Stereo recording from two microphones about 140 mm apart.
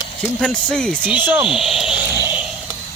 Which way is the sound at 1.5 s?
Centre (ahead or behind).